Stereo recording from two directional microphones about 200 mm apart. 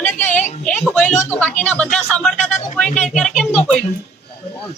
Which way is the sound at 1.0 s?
35° left (ahead or behind).